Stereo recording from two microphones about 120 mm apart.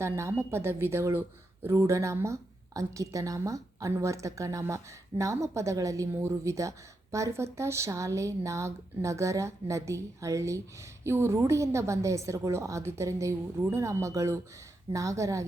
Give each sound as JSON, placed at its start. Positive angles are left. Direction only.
{"t": 0.0, "sound": "a woman's voice", "side_deg": -20}